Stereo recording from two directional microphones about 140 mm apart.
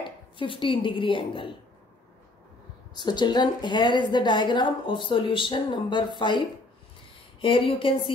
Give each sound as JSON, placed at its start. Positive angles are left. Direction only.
{"t": 0.4, "sound": "a woman's voice", "side_deg": 35}
{"t": 2.9, "sound": "a woman's voice", "side_deg": 30}